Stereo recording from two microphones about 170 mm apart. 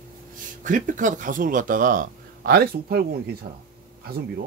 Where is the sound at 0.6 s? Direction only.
50° right (ahead or behind).